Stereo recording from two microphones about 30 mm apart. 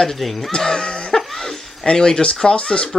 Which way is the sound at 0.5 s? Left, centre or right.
Left.